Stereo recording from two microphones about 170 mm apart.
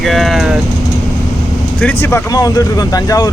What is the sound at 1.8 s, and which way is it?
Speech, 10° left (ahead or behind).